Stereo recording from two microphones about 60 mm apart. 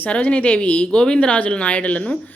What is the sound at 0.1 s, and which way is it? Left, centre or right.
A woman's voice, left.